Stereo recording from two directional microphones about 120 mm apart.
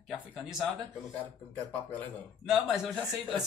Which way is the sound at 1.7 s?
15° left (ahead or behind).